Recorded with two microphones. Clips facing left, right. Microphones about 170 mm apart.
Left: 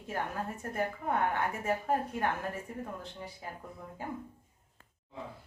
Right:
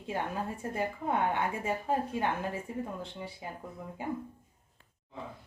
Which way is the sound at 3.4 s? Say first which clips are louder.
Right 1 dB; 15° right (ahead or behind).